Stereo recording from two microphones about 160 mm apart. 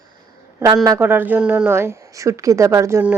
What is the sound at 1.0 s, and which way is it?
Speech, 10° right (ahead or behind).